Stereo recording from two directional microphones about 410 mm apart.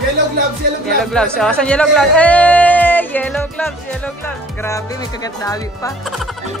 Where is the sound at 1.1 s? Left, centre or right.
Centre.